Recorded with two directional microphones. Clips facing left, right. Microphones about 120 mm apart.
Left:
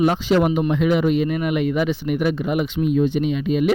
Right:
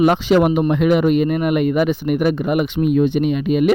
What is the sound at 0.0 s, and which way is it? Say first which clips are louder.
Speech: right 4 dB; 70° right (ahead or behind).